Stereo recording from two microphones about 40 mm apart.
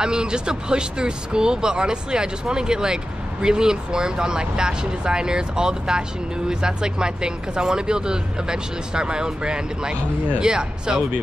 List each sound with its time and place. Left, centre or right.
0.0 s speech: centre